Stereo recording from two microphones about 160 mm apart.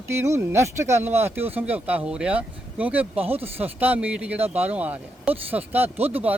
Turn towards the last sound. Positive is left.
turn(degrees=-10)  # may be behind; listen again after turning